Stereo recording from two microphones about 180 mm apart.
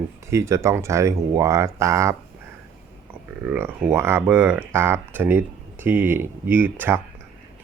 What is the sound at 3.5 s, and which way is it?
Speech, 10° right (ahead or behind).